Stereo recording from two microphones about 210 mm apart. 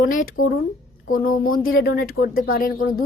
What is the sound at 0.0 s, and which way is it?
A woman's voice, 40° left (ahead or behind).